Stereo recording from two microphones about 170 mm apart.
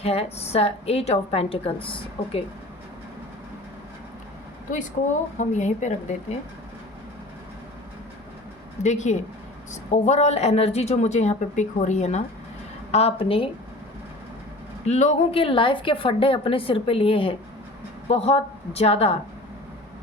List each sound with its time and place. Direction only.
0.0 s a woman's voice: 35° left (ahead or behind)
5.4 s a woman's voice: 45° left (ahead or behind)
8.8 s a woman's voice: 45° left (ahead or behind)
14.8 s a woman's voice: 40° left (ahead or behind)